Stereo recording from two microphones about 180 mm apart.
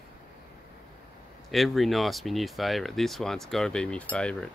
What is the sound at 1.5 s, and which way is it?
Speech, centre (ahead or behind).